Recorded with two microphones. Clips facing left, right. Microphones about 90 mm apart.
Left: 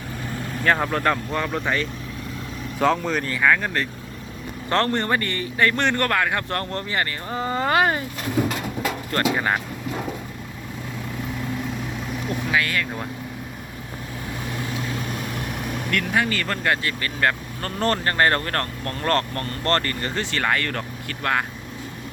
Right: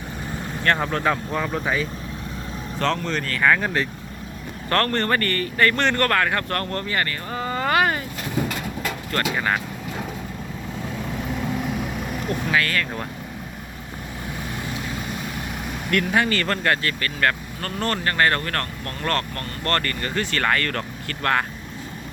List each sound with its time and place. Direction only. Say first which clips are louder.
0.6 s speech: left 1 dB; centre (ahead or behind)
2.7 s a man's voice: left 3 dB; 5° left (ahead or behind)
4.7 s a man's voice: even; 20° left (ahead or behind)
6.5 s speech: right 1 dB; 20° left (ahead or behind)
9.3 s speech: left 1 dB; 20° left (ahead or behind)
12.3 s a man's voice: right 1 dB; 10° left (ahead or behind)
15.9 s speech: right 3 dB; 5° right (ahead or behind)
16.8 s speech: even; 20° left (ahead or behind)
17.6 s speech: left 4 dB; 35° left (ahead or behind)
20.4 s a man's voice: even; 15° left (ahead or behind)